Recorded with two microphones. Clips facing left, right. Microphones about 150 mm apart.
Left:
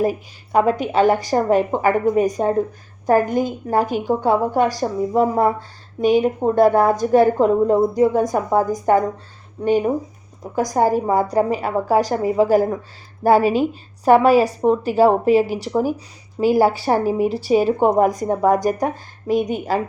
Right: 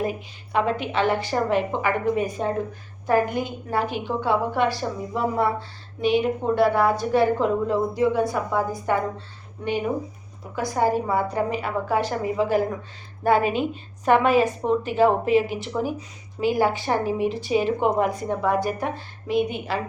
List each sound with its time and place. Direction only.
0.0 s a woman's voice: 40° left (ahead or behind)